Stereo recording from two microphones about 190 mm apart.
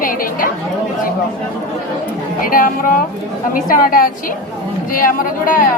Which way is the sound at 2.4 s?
45° left (ahead or behind).